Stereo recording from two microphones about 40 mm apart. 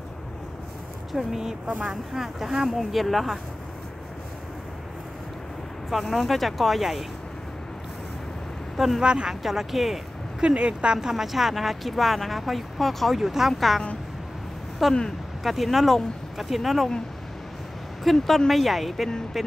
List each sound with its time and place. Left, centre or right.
1.1 s speech: centre
5.9 s speech: centre
8.7 s speech: centre
9.0 s speech: right
9.3 s speech: centre
10.4 s speech: right
11.0 s speech: centre
18.1 s speech: centre